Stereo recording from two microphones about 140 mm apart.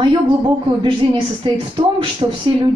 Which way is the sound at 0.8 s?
35° right (ahead or behind).